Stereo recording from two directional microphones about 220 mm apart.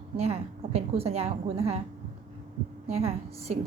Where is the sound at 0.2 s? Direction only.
25° right (ahead or behind).